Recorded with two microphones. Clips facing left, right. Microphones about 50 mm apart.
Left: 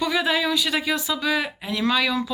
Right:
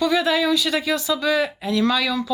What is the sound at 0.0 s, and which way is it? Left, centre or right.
A woman's voice, centre.